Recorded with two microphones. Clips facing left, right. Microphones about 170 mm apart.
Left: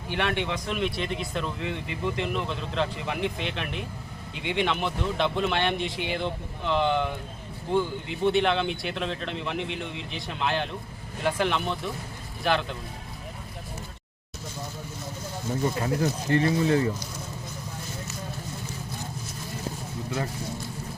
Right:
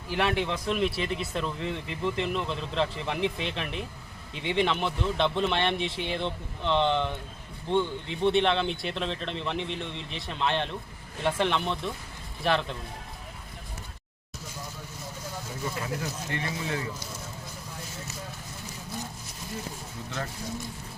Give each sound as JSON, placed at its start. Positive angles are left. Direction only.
{"t": 0.1, "sound": "speech", "side_deg": 0}
{"t": 15.8, "sound": "speech", "side_deg": 35}